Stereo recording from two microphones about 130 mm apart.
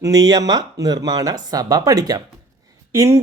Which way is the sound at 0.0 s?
30° right (ahead or behind).